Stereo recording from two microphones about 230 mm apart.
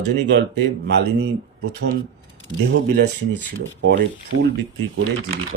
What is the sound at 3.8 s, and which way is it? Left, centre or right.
Speech, right.